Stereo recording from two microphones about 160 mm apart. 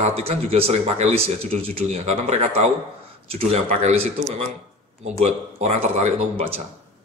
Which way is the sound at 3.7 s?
50° right (ahead or behind).